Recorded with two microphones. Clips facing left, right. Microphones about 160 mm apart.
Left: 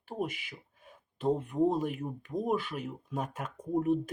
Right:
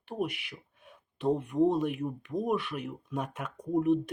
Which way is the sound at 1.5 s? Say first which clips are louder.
Right 2 dB; 10° left (ahead or behind).